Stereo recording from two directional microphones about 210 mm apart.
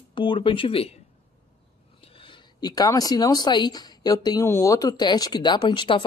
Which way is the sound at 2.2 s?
20° left (ahead or behind).